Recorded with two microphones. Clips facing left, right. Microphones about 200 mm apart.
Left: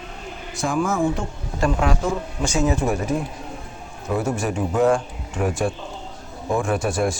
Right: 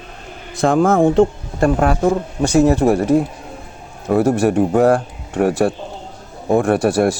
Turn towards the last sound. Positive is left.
turn(degrees=-65)  # may be behind; listen again after turning